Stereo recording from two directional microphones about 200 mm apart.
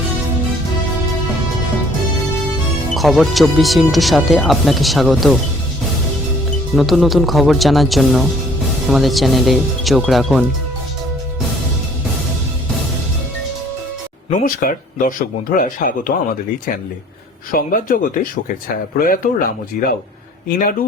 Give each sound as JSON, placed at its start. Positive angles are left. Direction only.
{"t": 2.9, "sound": "speech", "side_deg": 0}
{"t": 6.7, "sound": "speech", "side_deg": 0}
{"t": 14.3, "sound": "speech", "side_deg": 40}
{"t": 17.5, "sound": "speech", "side_deg": 40}